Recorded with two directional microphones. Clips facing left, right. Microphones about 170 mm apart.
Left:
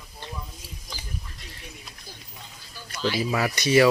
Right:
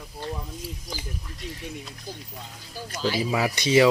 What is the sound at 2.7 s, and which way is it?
Speech, 40° right (ahead or behind).